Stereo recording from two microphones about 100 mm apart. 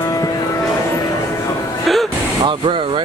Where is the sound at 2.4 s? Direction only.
60° right (ahead or behind).